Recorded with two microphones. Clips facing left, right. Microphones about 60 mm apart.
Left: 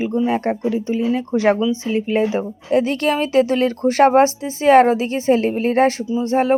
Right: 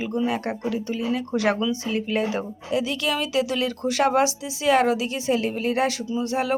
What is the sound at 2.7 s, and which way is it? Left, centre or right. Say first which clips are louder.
Speech: left 7 dB; left.